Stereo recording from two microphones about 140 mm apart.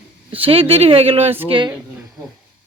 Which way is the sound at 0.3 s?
40° right (ahead or behind).